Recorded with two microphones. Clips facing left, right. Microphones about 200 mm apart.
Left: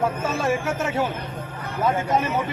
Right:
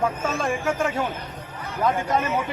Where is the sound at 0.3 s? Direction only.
5° left (ahead or behind).